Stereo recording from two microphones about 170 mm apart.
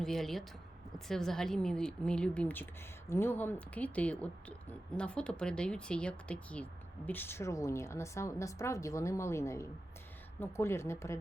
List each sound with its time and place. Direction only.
0.0 s a woman's voice: centre (ahead or behind)